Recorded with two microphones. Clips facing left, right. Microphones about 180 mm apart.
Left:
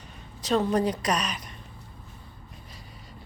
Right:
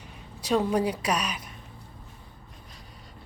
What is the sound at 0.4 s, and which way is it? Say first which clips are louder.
Speech: even; 10° right (ahead or behind).